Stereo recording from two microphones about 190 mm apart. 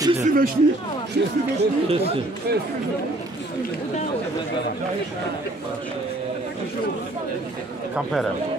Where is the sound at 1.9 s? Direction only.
30° right (ahead or behind).